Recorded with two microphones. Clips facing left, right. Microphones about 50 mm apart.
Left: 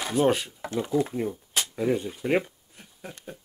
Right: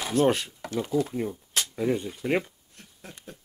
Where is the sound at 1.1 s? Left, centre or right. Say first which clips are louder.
Left 1 dB; centre.